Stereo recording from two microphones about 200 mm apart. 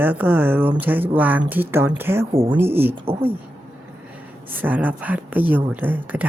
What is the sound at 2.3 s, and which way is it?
Speech, 30° right (ahead or behind).